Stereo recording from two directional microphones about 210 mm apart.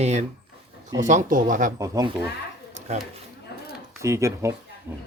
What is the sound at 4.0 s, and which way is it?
Speech, 15° right (ahead or behind).